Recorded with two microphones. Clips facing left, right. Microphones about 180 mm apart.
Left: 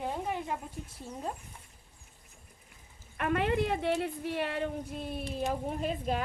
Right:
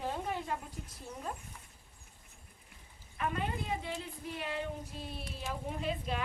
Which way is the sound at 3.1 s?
75° left (ahead or behind).